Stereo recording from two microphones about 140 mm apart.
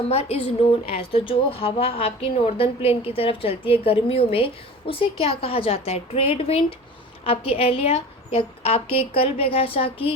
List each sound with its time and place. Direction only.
0.1 s a woman's voice: 45° left (ahead or behind)